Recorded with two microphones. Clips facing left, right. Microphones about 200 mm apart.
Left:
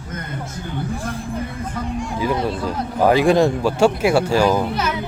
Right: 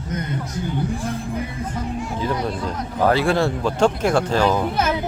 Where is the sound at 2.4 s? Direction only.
5° left (ahead or behind).